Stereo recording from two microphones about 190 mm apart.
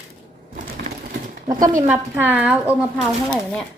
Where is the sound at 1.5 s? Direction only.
25° right (ahead or behind).